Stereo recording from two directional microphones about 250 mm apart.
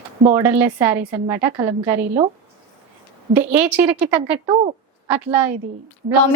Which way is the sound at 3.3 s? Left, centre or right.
Centre.